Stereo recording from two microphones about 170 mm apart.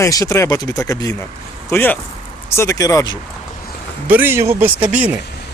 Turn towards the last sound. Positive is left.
turn(degrees=-10)  # may be behind; listen again after turning